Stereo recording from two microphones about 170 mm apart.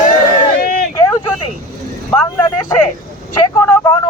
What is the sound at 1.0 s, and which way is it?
Vehicle, 20° left (ahead or behind).